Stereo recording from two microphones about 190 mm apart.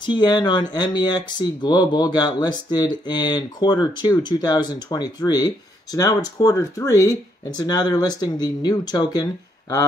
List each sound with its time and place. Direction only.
0.0 s speech: 20° left (ahead or behind)